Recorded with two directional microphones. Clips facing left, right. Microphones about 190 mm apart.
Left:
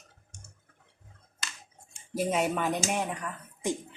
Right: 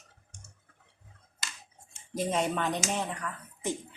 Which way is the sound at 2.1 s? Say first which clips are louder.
Left 2 dB; 10° left (ahead or behind).